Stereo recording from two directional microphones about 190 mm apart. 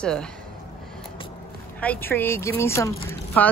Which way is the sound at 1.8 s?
10° left (ahead or behind).